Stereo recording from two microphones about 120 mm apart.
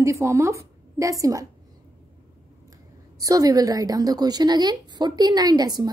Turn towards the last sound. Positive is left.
turn(degrees=-35)  # may be behind; listen again after turning